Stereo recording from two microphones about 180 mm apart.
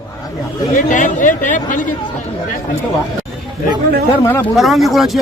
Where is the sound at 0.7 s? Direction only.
45° left (ahead or behind).